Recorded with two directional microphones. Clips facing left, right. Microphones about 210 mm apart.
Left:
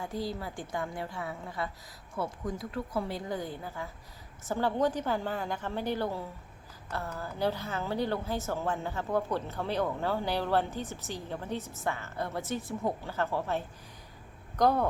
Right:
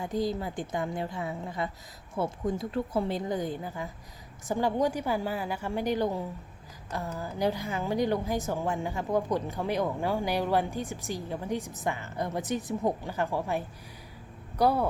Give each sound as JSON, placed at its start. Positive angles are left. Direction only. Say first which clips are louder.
{"t": 0.0, "sound": "a woman's voice", "louder": "right 5 dB", "side_deg": -20}